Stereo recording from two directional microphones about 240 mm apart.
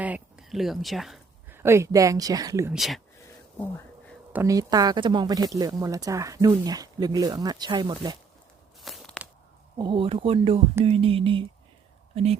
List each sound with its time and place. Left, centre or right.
0.0 s speech: centre
2.7 s speech: centre
4.3 s speech: centre
8.8 s a sound: centre
9.7 s speech: centre